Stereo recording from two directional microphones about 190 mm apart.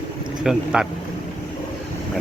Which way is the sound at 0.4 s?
5° right (ahead or behind).